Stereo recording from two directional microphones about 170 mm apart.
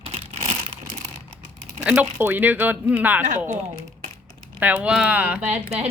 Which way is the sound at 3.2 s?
45° right (ahead or behind).